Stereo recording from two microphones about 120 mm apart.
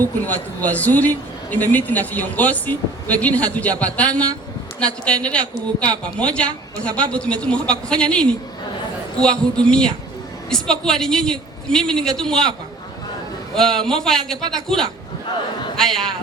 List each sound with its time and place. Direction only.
0.0 s a man's voice: 15° left (ahead or behind)
13.6 s a woman's voice: 5° left (ahead or behind)